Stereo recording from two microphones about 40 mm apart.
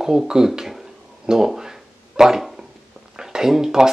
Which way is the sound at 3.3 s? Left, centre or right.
Centre.